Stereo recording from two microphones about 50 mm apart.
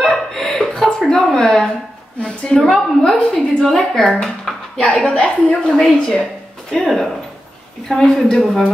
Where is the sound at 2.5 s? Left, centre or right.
Centre.